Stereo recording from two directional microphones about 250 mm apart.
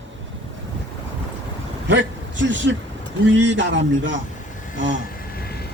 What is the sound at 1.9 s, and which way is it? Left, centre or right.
A man's voice, right.